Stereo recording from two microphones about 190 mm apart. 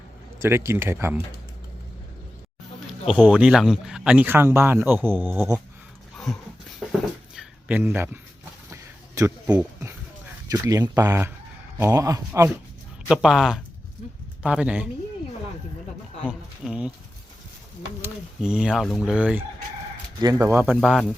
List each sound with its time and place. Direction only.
0.3 s speech: 15° right (ahead or behind)
3.1 s speech: 5° right (ahead or behind)
6.7 s a sound: 5° right (ahead or behind)
10.5 s speech: 15° right (ahead or behind)
13.1 s speech: centre (ahead or behind)
16.2 s speech: 5° right (ahead or behind)
18.0 s speech: 5° right (ahead or behind)